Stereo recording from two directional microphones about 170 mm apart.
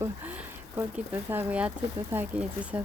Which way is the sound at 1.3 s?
5° right (ahead or behind).